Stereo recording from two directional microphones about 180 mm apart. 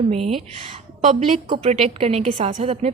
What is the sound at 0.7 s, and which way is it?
A woman's voice, 35° right (ahead or behind).